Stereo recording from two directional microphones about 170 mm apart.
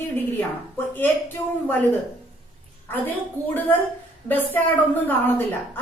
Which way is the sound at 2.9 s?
10° left (ahead or behind).